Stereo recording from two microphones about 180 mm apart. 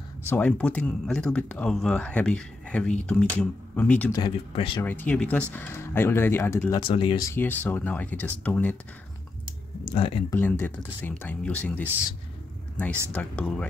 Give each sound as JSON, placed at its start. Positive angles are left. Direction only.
{"t": 0.3, "sound": "speech", "side_deg": 10}
{"t": 4.1, "sound": "speech", "side_deg": 25}
{"t": 4.8, "sound": "speech", "side_deg": 10}
{"t": 6.8, "sound": "speech", "side_deg": 30}
{"t": 9.9, "sound": "speech", "side_deg": 30}
{"t": 10.3, "sound": "speech", "side_deg": 10}
{"t": 13.1, "sound": "speech", "side_deg": 10}